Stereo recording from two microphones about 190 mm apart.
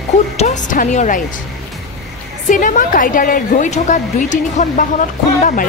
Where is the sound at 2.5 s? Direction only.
45° left (ahead or behind).